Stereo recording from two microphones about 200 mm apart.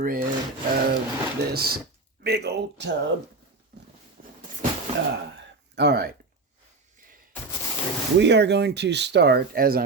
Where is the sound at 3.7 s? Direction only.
50° right (ahead or behind).